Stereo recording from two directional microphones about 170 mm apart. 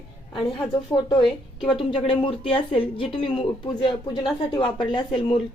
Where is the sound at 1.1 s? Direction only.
30° left (ahead or behind).